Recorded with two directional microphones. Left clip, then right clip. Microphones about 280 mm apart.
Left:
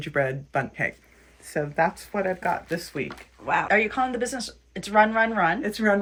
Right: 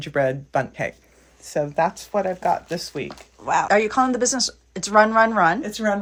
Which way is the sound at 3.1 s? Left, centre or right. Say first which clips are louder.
Right 3 dB; centre.